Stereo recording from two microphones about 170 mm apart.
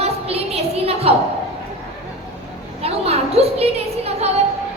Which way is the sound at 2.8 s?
35° right (ahead or behind).